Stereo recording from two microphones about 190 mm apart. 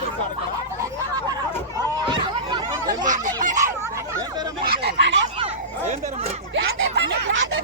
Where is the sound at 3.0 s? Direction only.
40° right (ahead or behind).